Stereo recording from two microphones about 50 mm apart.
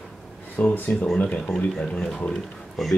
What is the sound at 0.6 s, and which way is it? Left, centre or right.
Speech, left.